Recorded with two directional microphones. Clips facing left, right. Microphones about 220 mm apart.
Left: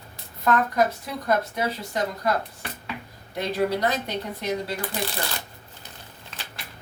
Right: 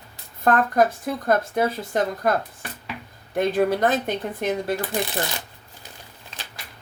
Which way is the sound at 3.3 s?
50° right (ahead or behind).